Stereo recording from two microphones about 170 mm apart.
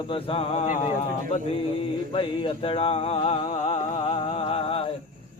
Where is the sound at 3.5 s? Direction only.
45° left (ahead or behind).